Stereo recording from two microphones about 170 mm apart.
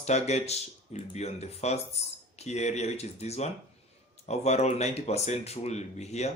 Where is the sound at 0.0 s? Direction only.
40° left (ahead or behind).